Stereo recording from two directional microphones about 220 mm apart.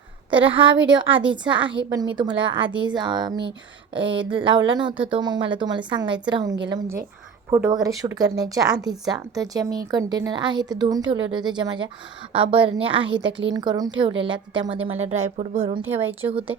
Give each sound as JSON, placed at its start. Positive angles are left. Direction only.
{"t": 0.3, "sound": "speech", "side_deg": -25}